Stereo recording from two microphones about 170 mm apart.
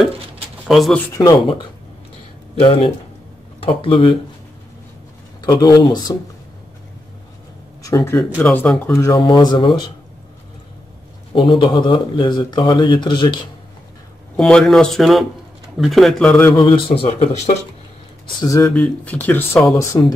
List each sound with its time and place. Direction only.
0.7 s speech: centre (ahead or behind)
1.1 s speech: 25° left (ahead or behind)
5.4 s speech: 20° left (ahead or behind)
7.8 s speech: 15° left (ahead or behind)
11.3 s speech: 30° left (ahead or behind)
14.3 s speech: 5° left (ahead or behind)
16.5 s speech: 30° left (ahead or behind)
18.4 s speech: 20° left (ahead or behind)
18.7 s speech: 5° left (ahead or behind)